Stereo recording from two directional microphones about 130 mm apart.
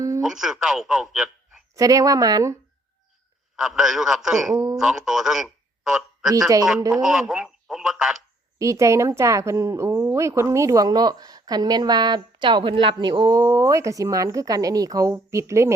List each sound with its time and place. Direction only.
0.2 s speech: 5° right (ahead or behind)
1.7 s speech: 25° right (ahead or behind)
3.5 s speech: 5° right (ahead or behind)
4.5 s speech: 30° right (ahead or behind)
4.8 s a man's voice: 5° right (ahead or behind)
8.5 s speech: 25° right (ahead or behind)